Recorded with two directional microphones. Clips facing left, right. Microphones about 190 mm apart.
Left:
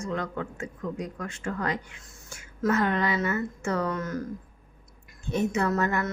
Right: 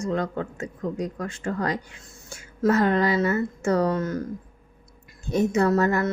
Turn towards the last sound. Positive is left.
turn(degrees=-35)  # may be behind; listen again after turning